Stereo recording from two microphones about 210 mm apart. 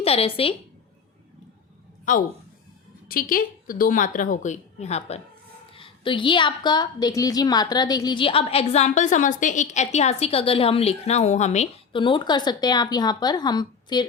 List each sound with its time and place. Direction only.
0.0 s a woman's voice: 30° left (ahead or behind)
2.1 s a woman's voice: 40° left (ahead or behind); by 14.1 s 20° left (ahead or behind)